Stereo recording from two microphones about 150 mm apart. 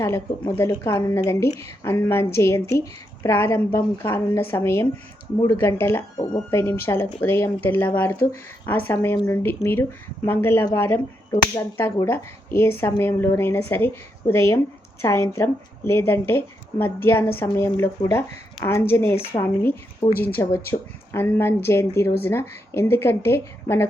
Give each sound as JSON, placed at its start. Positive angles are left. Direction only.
{"t": 0.0, "sound": "speech", "side_deg": 15}